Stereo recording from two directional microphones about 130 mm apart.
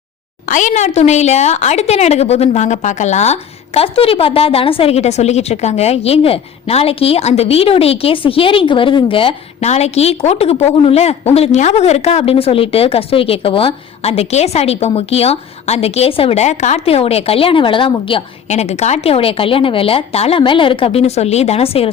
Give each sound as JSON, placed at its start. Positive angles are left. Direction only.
{"t": 0.4, "sound": "a woman's voice", "side_deg": 75}
{"t": 3.8, "sound": "a woman's voice", "side_deg": 45}
{"t": 9.6, "sound": "a woman's voice", "side_deg": 55}
{"t": 18.4, "sound": "a woman's voice", "side_deg": 60}